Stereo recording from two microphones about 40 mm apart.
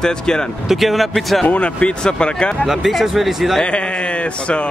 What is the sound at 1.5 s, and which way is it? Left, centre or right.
Speech, left.